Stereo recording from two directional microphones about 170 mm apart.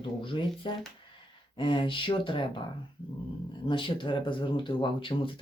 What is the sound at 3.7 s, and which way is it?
Speech, 30° left (ahead or behind).